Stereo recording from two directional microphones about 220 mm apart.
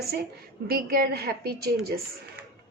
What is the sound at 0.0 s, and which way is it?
A woman's voice, 45° right (ahead or behind).